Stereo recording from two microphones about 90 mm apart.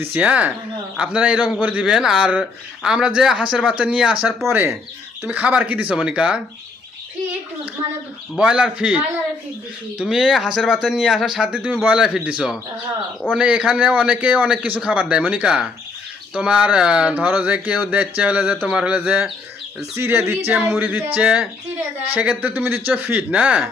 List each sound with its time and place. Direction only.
0.0 s speech: 20° right (ahead or behind)
4.5 s speech: 25° right (ahead or behind)
8.4 s speech: 10° right (ahead or behind)